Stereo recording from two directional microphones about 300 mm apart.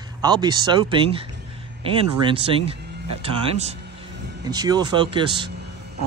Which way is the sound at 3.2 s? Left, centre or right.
Right.